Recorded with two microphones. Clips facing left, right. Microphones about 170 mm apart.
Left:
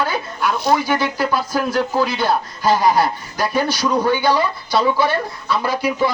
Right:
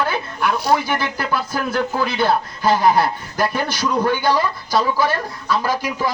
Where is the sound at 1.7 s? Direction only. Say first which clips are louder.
Left 1 dB; 55° right (ahead or behind).